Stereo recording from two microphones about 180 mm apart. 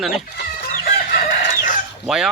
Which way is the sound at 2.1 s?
5° right (ahead or behind).